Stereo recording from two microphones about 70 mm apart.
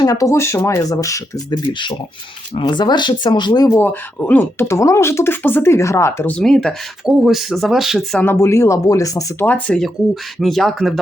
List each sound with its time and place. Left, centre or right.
0.0 s speech: left
0.3 s speech: left
2.6 s speech: left
3.7 s speech: left
4.2 s speech: left
4.5 s speech: left
6.4 s speech: centre
7.0 s speech: centre
8.4 s speech: left
9.4 s speech: left
10.4 s speech: centre